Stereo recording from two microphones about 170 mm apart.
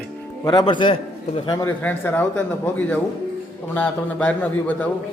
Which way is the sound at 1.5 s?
15° left (ahead or behind).